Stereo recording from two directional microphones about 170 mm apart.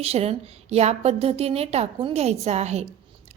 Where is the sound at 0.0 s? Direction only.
40° right (ahead or behind).